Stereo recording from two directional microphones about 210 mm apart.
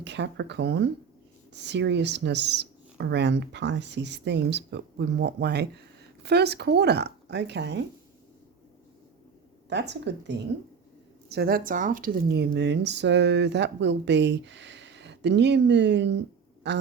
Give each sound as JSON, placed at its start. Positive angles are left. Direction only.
{"t": 0.0, "sound": "speech", "side_deg": -55}
{"t": 9.6, "sound": "speech", "side_deg": -55}